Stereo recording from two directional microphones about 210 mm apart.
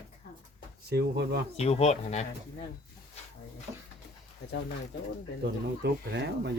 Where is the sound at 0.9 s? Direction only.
50° right (ahead or behind).